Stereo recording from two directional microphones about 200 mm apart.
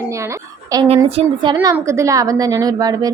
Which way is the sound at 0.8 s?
30° right (ahead or behind).